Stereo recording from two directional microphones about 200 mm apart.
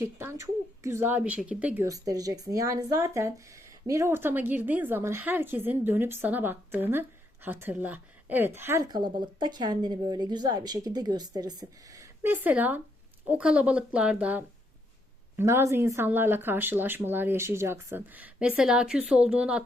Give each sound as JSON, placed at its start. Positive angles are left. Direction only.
{"t": 0.0, "sound": "a woman's voice", "side_deg": -10}